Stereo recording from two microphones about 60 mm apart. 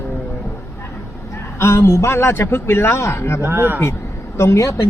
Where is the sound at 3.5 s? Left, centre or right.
Right.